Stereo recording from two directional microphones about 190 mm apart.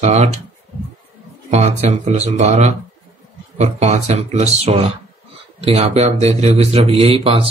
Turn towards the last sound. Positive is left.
turn(degrees=-30)  # may be behind; listen again after turning